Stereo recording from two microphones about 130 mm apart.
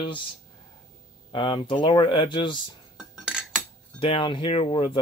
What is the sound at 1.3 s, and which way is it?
Speech, 40° left (ahead or behind).